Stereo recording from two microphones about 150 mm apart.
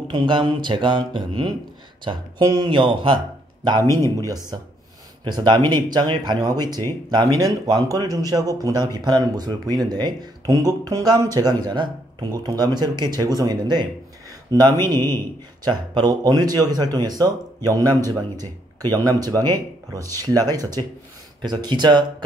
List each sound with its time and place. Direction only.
0.1 s speech: 30° right (ahead or behind)